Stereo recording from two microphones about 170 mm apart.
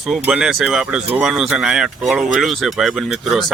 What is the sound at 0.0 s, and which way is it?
Speech, 5° right (ahead or behind).